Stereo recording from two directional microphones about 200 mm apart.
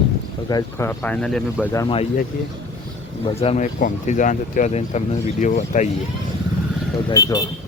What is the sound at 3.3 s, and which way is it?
Speech, 30° left (ahead or behind).